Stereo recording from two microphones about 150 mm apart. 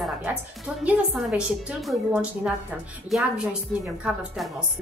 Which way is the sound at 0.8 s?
5° right (ahead or behind).